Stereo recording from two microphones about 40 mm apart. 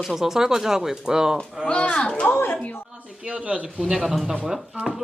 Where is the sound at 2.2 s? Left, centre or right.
Left.